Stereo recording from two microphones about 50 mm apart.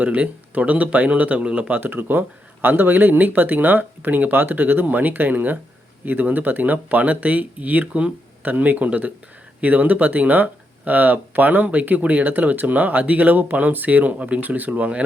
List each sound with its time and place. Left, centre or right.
0.0 s speech: right
1.7 s speech: right